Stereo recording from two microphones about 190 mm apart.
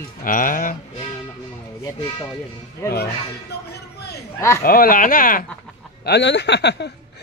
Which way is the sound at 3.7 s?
60° left (ahead or behind).